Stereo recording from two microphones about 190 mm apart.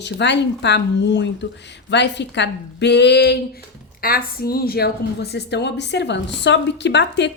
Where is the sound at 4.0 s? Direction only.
50° left (ahead or behind); by 7.3 s 65° left (ahead or behind).